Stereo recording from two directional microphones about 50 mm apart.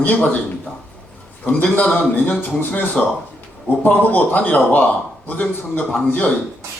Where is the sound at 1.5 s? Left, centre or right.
Left.